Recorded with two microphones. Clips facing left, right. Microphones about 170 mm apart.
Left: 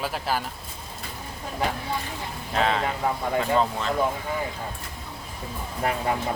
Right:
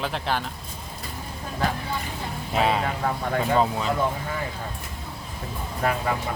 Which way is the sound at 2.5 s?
10° right (ahead or behind).